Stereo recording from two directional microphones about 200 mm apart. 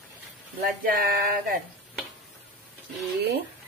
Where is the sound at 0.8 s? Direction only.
45° right (ahead or behind).